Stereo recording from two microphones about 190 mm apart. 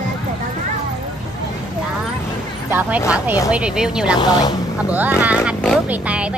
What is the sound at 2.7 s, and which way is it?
Speech, 10° right (ahead or behind).